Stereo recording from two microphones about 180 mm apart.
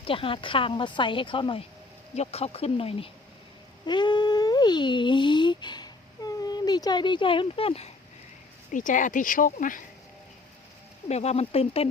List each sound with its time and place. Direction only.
0.0 s a woman's voice: 30° left (ahead or behind)
8.7 s speech: 45° left (ahead or behind)
11.1 s speech: 35° left (ahead or behind)